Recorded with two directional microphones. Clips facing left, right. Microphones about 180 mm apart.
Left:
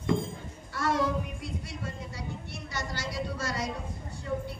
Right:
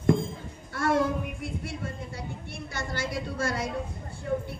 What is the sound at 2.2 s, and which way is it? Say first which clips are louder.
A woman's voice: right 1 dB; 55° right (ahead or behind).